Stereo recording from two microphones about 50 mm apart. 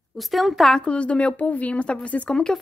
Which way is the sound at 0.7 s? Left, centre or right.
Left.